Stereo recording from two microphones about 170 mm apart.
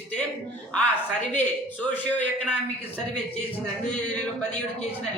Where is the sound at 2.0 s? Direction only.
10° left (ahead or behind).